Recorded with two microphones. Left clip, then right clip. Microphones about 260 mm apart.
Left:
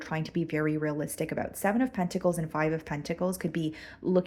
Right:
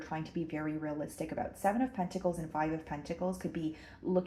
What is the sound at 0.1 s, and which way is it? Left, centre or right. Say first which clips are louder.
Speech: left 7 dB; left.